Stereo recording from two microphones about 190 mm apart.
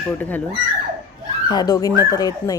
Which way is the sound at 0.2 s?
10° left (ahead or behind).